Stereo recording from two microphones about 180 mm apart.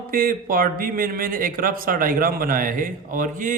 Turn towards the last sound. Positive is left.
turn(degrees=-45)  # may be behind; listen again after turning